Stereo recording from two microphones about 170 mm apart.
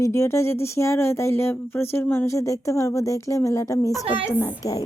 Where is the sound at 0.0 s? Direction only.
15° left (ahead or behind).